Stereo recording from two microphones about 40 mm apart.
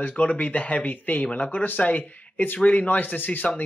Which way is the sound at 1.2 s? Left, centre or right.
Left.